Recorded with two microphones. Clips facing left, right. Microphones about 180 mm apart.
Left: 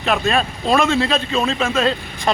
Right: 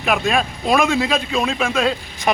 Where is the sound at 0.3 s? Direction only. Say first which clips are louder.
Left 1 dB; 10° right (ahead or behind).